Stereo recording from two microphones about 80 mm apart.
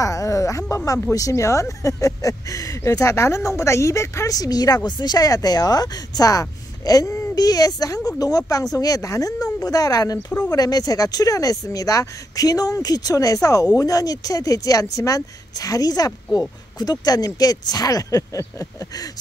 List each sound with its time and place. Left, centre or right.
0.0 s a sound: left
1.1 s speech: left
4.4 s speech: left